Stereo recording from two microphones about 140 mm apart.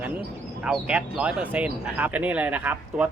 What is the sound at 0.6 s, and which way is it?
Speech, 10° right (ahead or behind).